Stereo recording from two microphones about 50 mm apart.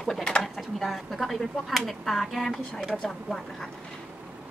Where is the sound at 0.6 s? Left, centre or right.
Centre.